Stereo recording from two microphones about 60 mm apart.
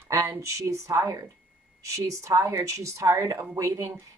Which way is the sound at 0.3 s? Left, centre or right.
Right.